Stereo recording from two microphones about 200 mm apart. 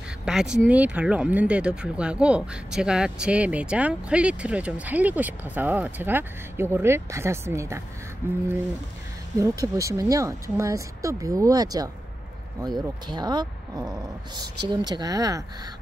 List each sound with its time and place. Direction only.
0.2 s speech: 5° right (ahead or behind)
9.4 s speech: 15° right (ahead or behind)